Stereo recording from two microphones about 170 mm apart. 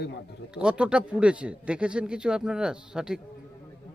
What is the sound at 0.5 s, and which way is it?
Speech, 5° right (ahead or behind).